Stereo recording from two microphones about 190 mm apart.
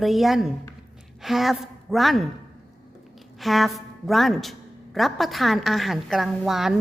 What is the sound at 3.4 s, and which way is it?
A woman's voice, centre (ahead or behind).